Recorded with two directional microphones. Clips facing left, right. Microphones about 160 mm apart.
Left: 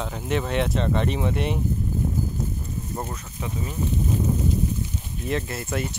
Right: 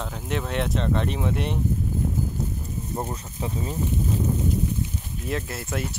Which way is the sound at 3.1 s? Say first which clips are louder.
Right 2 dB; 30° right (ahead or behind).